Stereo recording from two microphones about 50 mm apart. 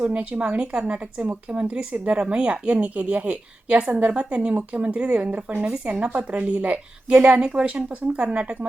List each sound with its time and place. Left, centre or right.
0.0 s speech: right
5.2 s speech: right
5.8 s speech: right